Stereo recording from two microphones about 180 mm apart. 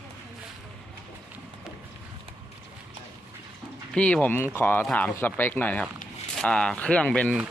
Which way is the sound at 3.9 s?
5° left (ahead or behind).